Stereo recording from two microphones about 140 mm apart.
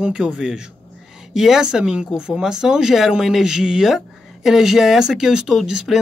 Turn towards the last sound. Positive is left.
turn(degrees=-5)  # may be behind; listen again after turning